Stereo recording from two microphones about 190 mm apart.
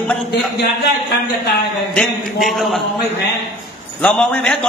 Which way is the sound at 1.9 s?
Centre (ahead or behind).